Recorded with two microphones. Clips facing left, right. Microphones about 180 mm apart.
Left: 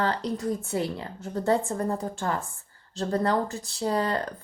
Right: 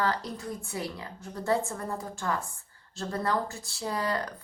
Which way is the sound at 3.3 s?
25° left (ahead or behind).